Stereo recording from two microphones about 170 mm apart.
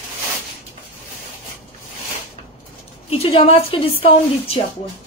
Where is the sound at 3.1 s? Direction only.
35° left (ahead or behind).